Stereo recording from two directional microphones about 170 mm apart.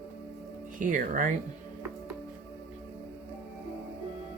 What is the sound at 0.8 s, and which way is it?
Speech, 50° right (ahead or behind).